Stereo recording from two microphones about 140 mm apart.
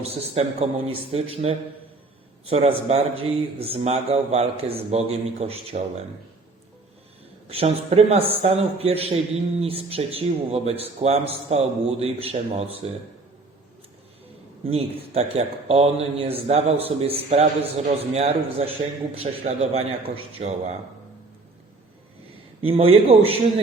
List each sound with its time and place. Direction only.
0.0 s speech: 45° right (ahead or behind)
7.4 s speech: 45° right (ahead or behind)
14.6 s speech: 45° right (ahead or behind)
22.6 s a man's voice: 40° right (ahead or behind)